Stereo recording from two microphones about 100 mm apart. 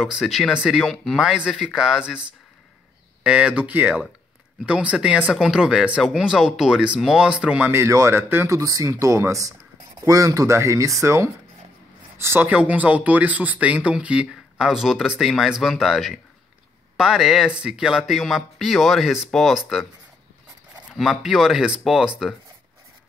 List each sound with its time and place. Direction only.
0.0 s speech: 5° right (ahead or behind)
3.3 s speech: 10° right (ahead or behind)
7.7 s speech: 25° right (ahead or behind); by 19.9 s 5° right (ahead or behind)
21.0 s speech: 5° right (ahead or behind)